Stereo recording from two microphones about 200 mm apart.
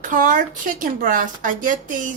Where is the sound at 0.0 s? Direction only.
40° right (ahead or behind).